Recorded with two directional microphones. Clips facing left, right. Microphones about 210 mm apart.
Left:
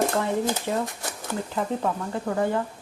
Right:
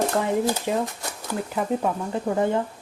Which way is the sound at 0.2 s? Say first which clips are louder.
Right 2 dB; 15° right (ahead or behind).